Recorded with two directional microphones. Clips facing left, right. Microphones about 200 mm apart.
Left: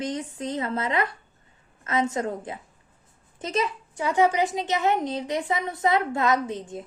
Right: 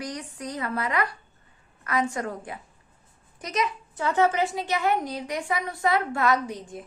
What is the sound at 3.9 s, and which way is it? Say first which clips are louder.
A woman's voice: left 1 dB; 15° left (ahead or behind).